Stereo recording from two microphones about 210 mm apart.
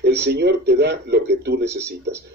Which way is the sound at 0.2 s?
55° right (ahead or behind).